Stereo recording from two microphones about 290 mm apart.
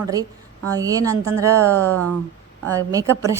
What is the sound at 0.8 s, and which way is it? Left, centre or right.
Speech, centre.